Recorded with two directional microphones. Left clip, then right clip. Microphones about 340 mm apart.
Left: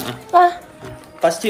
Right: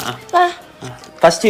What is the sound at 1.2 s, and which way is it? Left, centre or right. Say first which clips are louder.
Speech: right 6 dB; right.